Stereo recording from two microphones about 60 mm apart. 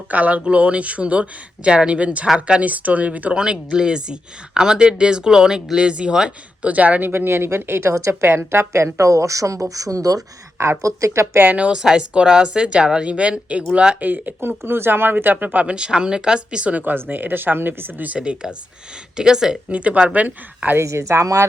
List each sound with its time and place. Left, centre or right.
0.1 s speech: right
7.1 s speech: right
10.8 s speech: right
11.3 s speech: right
14.0 s speech: right
14.6 s speech: right
18.1 s speech: centre
19.7 s speech: right
20.8 s speech: right